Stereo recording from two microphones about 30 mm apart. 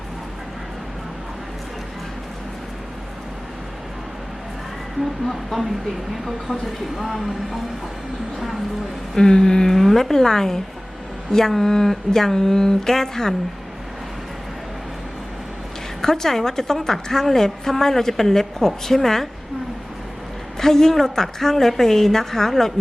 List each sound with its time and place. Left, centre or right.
5.3 s speech: centre
9.1 s a woman's voice: centre
9.7 s a woman's voice: centre
16.0 s a woman's voice: centre
20.6 s a woman's voice: centre